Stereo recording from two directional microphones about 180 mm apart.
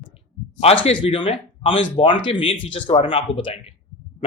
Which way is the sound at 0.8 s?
30° left (ahead or behind).